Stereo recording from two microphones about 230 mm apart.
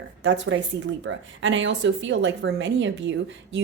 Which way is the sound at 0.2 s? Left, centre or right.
Right.